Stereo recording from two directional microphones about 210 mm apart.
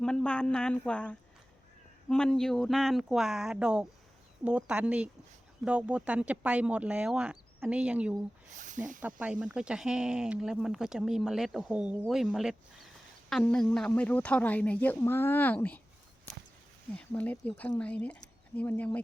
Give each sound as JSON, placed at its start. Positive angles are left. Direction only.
{"t": 0.0, "sound": "speech", "side_deg": 5}
{"t": 8.5, "sound": "speech", "side_deg": -35}
{"t": 9.0, "sound": "a woman's voice", "side_deg": -5}
{"t": 16.9, "sound": "a woman's voice", "side_deg": 5}